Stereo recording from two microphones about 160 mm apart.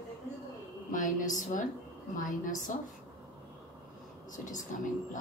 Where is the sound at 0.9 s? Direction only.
55° left (ahead or behind).